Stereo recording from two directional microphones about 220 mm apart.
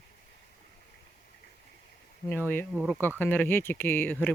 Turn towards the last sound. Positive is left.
turn(degrees=10)  # may be behind; listen again after turning